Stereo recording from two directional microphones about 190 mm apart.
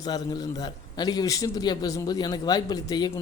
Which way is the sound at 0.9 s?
20° left (ahead or behind).